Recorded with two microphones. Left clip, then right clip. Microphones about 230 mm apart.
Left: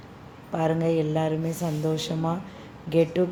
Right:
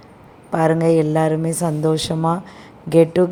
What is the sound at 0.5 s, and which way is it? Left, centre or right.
A woman's voice, right.